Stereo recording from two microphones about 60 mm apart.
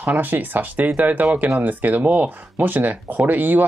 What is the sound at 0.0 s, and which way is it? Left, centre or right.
Speech, right.